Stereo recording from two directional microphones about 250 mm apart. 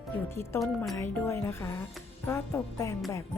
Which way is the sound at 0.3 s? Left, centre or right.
Centre.